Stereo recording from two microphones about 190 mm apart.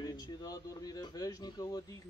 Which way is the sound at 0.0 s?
20° left (ahead or behind).